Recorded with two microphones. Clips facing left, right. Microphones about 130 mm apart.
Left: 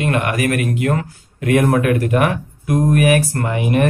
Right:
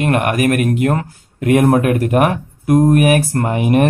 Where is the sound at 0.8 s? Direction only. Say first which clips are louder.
Right 3 dB; 30° right (ahead or behind).